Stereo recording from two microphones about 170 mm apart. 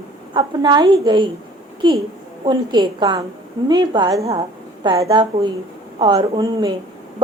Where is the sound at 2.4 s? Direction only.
25° right (ahead or behind).